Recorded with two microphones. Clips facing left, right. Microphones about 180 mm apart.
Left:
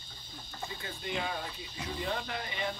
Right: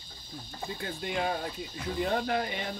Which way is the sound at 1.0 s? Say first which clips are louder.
Right 4 dB; 45° right (ahead or behind).